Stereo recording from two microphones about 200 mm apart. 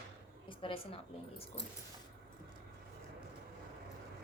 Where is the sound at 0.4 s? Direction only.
25° left (ahead or behind).